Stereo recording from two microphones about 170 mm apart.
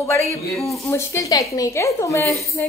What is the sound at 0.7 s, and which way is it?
A woman's voice, 15° left (ahead or behind).